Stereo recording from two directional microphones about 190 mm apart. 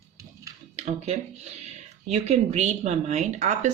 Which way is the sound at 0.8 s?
35° right (ahead or behind).